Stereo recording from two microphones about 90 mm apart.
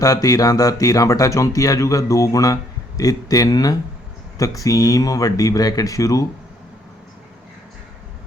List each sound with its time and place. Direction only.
0.0 s speech: 40° left (ahead or behind)